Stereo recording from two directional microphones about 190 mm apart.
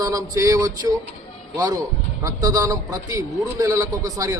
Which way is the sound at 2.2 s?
15° right (ahead or behind).